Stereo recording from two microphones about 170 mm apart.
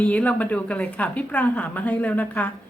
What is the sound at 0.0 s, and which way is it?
A woman's voice, 10° left (ahead or behind).